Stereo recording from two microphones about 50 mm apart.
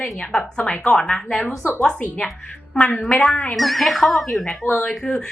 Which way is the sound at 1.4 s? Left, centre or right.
Left.